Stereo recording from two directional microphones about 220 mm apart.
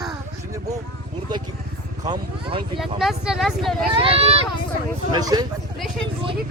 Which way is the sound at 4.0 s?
25° right (ahead or behind).